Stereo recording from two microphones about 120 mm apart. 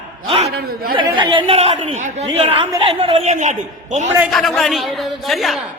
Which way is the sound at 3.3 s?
85° right.